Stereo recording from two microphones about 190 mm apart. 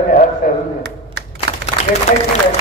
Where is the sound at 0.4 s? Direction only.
45° left (ahead or behind).